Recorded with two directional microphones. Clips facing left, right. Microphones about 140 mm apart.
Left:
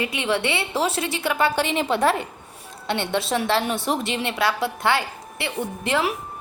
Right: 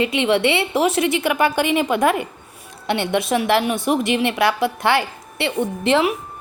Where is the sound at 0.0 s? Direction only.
25° right (ahead or behind).